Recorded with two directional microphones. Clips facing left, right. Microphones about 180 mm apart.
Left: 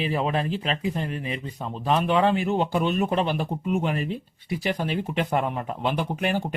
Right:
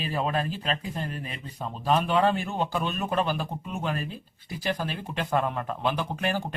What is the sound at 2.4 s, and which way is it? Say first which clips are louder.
Speech: left 6 dB; 20° left (ahead or behind).